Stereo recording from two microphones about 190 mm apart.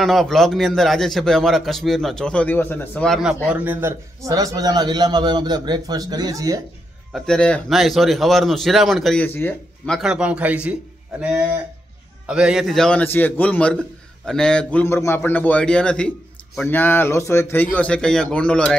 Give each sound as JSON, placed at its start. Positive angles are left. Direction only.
{"t": 0.0, "sound": "a man's voice", "side_deg": 0}
{"t": 7.1, "sound": "a man's voice", "side_deg": 5}